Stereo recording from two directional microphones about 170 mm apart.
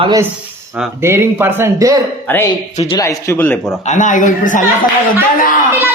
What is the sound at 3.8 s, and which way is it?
Speech, 45° left (ahead or behind).